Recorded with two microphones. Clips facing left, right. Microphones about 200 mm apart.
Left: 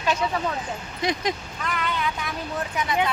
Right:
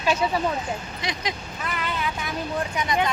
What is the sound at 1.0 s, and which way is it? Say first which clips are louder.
Speech: left 10 dB; 50° left (ahead or behind).